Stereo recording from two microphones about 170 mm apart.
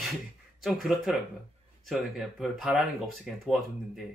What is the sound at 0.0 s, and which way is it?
Speech, centre (ahead or behind).